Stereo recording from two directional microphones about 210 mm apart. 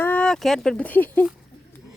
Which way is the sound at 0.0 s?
5° left (ahead or behind).